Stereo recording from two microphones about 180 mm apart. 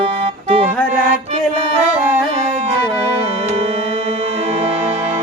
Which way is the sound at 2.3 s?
30° right (ahead or behind).